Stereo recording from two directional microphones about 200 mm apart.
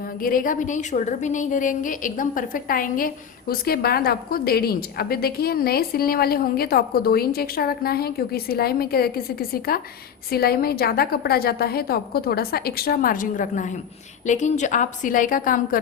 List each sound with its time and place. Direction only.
0.2 s a woman's voice: 45° left (ahead or behind)